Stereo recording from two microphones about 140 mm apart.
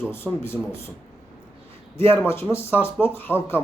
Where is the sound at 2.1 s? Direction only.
15° left (ahead or behind).